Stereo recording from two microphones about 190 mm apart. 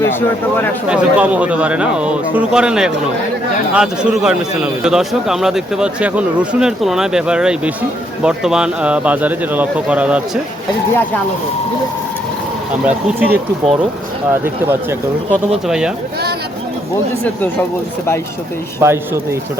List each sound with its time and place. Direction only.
0.0 s speech: 10° left (ahead or behind)
0.9 s a man's voice: 5° right (ahead or behind)
12.8 s speech: 10° right (ahead or behind)
18.8 s speech: 15° right (ahead or behind)